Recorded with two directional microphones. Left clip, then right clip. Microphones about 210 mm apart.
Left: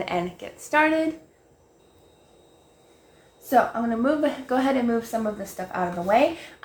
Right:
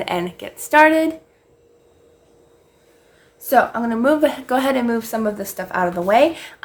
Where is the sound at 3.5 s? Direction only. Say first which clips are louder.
Right 5 dB; 50° right (ahead or behind).